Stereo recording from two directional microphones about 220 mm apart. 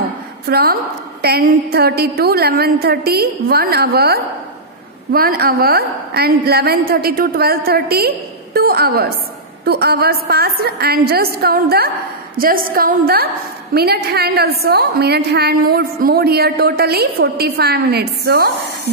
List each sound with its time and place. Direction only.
0.5 s a woman's voice: 45° right (ahead or behind)